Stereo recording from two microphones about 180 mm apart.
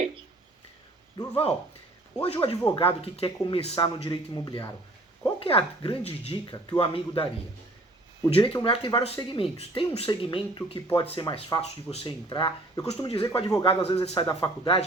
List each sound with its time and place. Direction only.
1.3 s speech: 30° left (ahead or behind)
8.3 s speech: 30° left (ahead or behind)
14.2 s speech: 20° left (ahead or behind)